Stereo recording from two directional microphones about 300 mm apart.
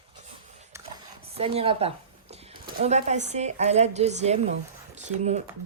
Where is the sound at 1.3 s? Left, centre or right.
Centre.